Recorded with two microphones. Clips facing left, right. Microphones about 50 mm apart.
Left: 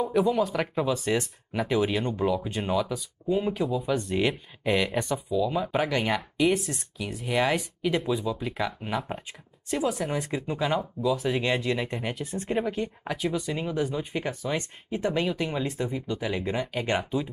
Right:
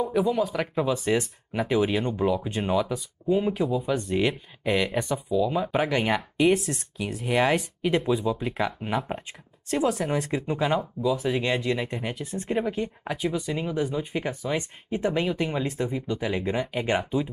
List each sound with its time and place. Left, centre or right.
0.0 s speech: centre
10.0 s speech: centre
10.3 s speech: centre